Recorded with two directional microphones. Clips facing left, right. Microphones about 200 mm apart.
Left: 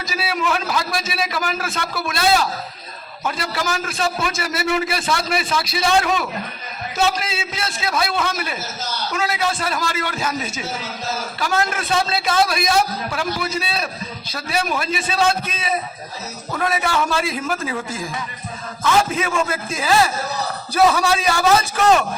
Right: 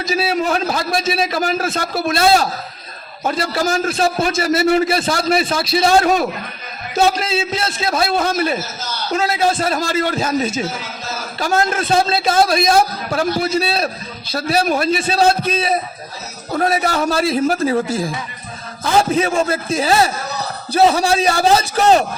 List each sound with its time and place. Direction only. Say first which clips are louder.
0.0 s a man's voice: right 5 dB; 25° right (ahead or behind)
7.2 s a man's voice: right 7 dB; 25° right (ahead or behind)
8.1 s a man's voice: right 6 dB; 40° right (ahead or behind)
12.7 s a man's voice: right 4 dB; 45° right (ahead or behind)
13.3 s a man's voice: right 6 dB; 35° right (ahead or behind)